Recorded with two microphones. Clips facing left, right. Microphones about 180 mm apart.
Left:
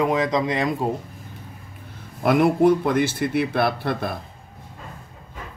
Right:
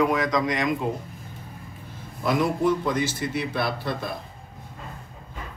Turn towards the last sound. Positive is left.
turn(degrees=60)  # may be behind; listen again after turning